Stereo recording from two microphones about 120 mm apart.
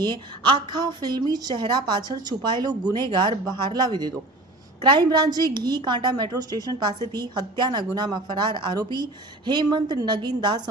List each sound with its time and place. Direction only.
0.0 s a woman's voice: 40° right (ahead or behind)